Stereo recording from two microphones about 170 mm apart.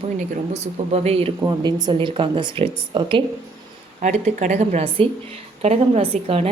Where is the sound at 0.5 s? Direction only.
40° right (ahead or behind).